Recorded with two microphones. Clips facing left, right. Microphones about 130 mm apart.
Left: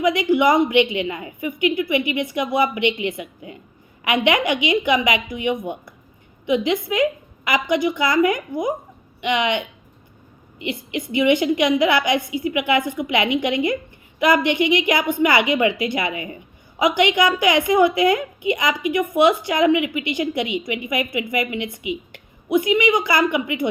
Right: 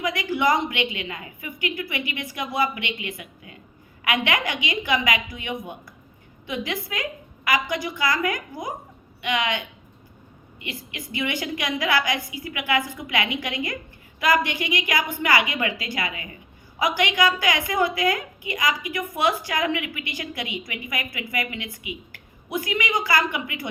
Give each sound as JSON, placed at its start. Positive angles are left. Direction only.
{"t": 0.0, "sound": "a woman's voice", "side_deg": 20}